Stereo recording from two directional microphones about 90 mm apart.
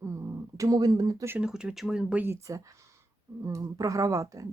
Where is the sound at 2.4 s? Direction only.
35° right (ahead or behind).